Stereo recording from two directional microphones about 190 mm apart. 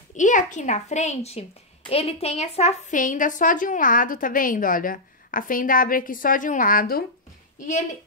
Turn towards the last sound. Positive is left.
turn(degrees=40)  # may be behind; listen again after turning